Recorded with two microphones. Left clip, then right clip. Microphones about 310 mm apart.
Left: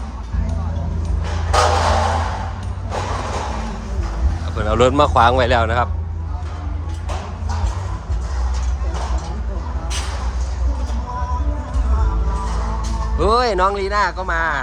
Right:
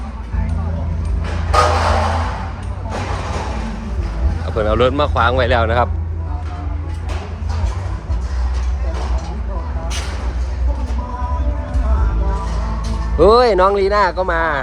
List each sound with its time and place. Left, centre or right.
1.2 s a sound: left
4.4 s speech: centre
13.1 s speech: centre